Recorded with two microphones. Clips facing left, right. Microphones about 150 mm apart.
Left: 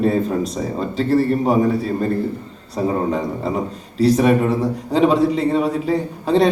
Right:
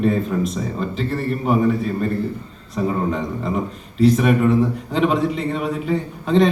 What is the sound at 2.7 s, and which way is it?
A man's voice, 35° left (ahead or behind).